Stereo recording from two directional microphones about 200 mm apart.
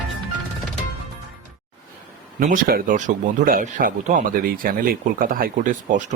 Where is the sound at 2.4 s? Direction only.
45° right (ahead or behind).